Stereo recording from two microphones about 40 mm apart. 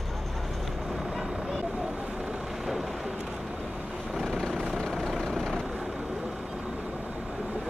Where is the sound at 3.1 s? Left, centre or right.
Centre.